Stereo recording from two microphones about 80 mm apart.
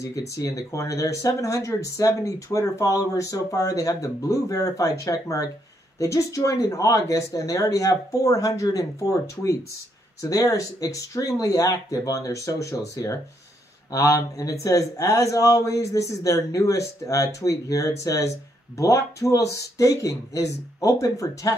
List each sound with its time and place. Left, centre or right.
0.0 s speech: left